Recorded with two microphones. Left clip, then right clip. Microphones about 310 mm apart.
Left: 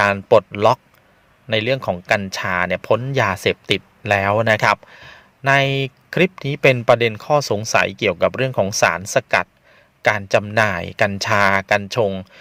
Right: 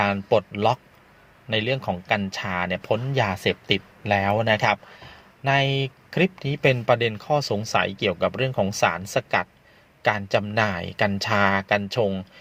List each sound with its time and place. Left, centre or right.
0.0 s speech: left